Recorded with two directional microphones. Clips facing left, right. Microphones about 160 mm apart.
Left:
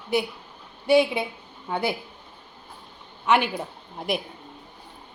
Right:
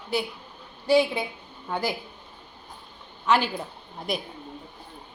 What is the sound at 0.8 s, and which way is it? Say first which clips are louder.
A woman's voice: left 2 dB; 20° left (ahead or behind).